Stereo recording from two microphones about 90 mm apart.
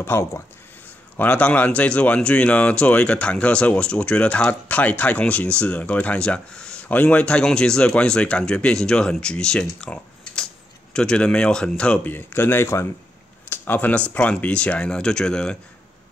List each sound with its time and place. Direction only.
0.0 s speech: 30° left (ahead or behind); by 12.1 s 10° left (ahead or behind)
12.1 s speech: 25° left (ahead or behind); by 15.5 s 10° left (ahead or behind)